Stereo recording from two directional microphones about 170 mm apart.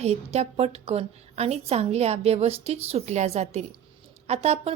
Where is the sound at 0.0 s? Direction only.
40° right (ahead or behind).